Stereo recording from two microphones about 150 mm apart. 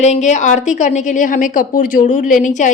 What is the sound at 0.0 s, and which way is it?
A woman's voice, 50° left (ahead or behind).